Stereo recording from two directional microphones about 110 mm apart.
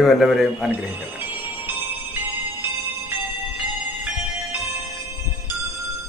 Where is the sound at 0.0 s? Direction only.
Centre (ahead or behind).